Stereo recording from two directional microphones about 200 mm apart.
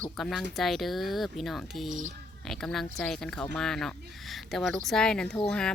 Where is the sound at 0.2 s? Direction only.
Centre (ahead or behind).